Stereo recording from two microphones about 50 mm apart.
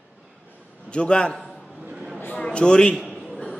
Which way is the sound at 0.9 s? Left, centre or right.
Centre.